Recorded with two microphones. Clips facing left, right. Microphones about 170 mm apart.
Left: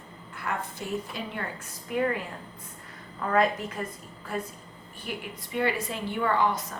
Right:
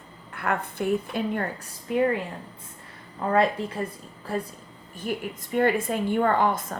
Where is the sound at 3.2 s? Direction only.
30° right (ahead or behind).